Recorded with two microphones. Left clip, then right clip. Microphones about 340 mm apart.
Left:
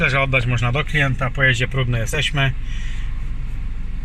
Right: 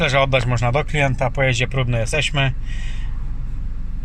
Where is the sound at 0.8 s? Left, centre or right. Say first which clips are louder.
Right 1 dB; right.